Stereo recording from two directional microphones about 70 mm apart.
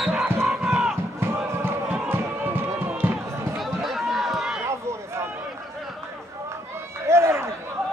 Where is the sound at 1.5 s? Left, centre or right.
Right.